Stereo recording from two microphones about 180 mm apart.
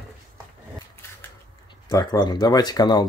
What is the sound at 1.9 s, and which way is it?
Speech, 20° left (ahead or behind).